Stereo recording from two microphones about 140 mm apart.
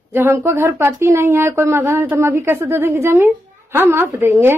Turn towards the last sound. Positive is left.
turn(degrees=-15)  # may be behind; listen again after turning